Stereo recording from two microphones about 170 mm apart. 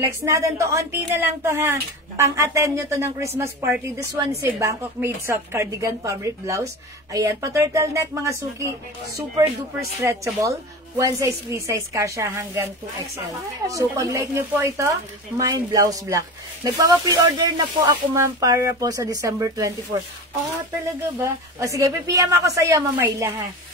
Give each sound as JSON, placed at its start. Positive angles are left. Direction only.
{"t": 0.2, "sound": "a woman's voice", "side_deg": -15}
{"t": 3.3, "sound": "speech", "side_deg": -5}
{"t": 3.8, "sound": "a woman's voice", "side_deg": -15}
{"t": 21.2, "sound": "a woman's voice", "side_deg": -20}